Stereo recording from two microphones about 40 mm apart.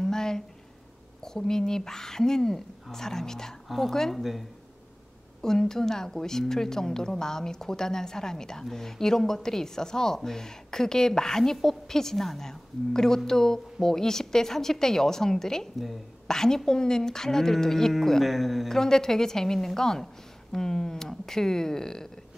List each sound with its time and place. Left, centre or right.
0.0 s a sound: centre
1.2 s a woman's voice: centre
3.6 s speech: centre
3.9 s a woman's voice: centre
4.2 s speech: centre
5.4 s a woman's voice: centre
18.7 s a woman's voice: centre